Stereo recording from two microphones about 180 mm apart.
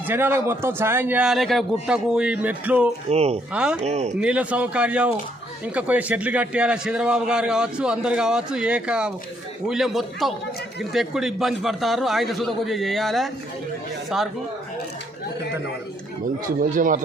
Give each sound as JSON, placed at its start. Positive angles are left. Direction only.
{"t": 0.1, "sound": "a man's voice", "side_deg": -15}
{"t": 3.1, "sound": "speech", "side_deg": -35}
{"t": 3.5, "sound": "a man's voice", "side_deg": -5}
{"t": 3.8, "sound": "speech", "side_deg": -40}
{"t": 4.2, "sound": "a man's voice", "side_deg": -5}
{"t": 16.5, "sound": "speech", "side_deg": -50}